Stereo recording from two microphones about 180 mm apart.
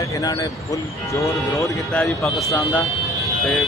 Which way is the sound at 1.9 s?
5° left (ahead or behind).